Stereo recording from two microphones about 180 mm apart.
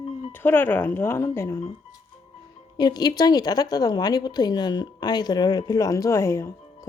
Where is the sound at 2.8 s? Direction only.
25° left (ahead or behind).